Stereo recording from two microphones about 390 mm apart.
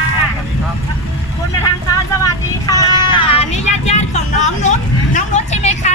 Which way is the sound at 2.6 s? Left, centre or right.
Centre.